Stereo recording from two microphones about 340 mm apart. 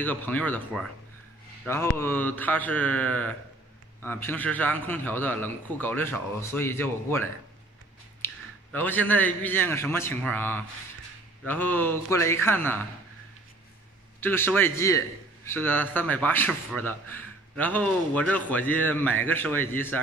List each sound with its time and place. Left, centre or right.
0.0 s a man's voice: centre
8.2 s a sound: centre
8.7 s a man's voice: centre
14.2 s a man's voice: centre